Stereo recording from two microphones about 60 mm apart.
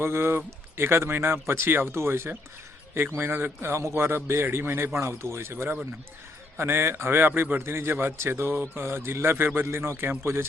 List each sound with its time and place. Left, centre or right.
0.0 s a man's voice: right